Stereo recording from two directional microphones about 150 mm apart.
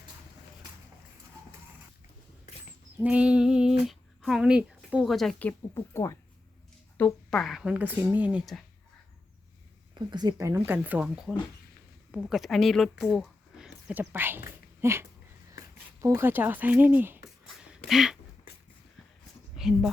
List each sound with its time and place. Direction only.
3.0 s speech: 10° right (ahead or behind); by 6.1 s 20° left (ahead or behind)
6.9 s speech: 10° left (ahead or behind)
9.9 s speech: 30° right (ahead or behind); by 18.2 s 5° right (ahead or behind)
19.5 s speech: centre (ahead or behind)